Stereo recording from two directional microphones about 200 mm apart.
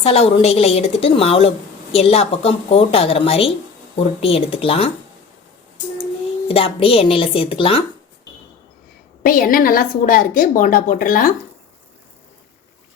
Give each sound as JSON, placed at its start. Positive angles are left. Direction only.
{"t": 0.0, "sound": "a woman's voice", "side_deg": 30}
{"t": 6.5, "sound": "a woman's voice", "side_deg": 30}
{"t": 9.2, "sound": "a woman's voice", "side_deg": 45}